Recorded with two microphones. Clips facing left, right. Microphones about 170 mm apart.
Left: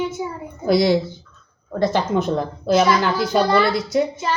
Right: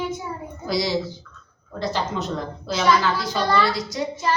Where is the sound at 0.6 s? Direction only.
55° left (ahead or behind).